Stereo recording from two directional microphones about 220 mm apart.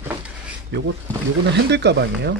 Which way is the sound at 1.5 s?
50° right (ahead or behind).